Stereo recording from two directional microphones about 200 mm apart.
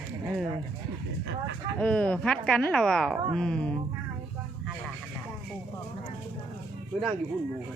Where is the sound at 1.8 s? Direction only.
5° left (ahead or behind).